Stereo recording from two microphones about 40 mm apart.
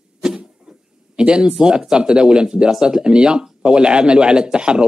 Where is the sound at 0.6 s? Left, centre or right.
Right.